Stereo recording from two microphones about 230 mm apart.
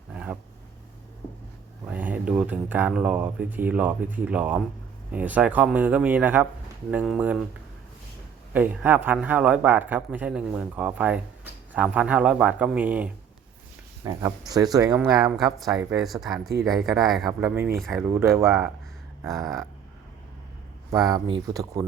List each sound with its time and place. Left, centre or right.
0.1 s a sound: centre
1.9 s speech: centre
8.5 s speech: centre
15.5 s speech: centre
17.7 s speech: centre
18.1 s speech: centre
19.3 s speech: centre
20.9 s speech: centre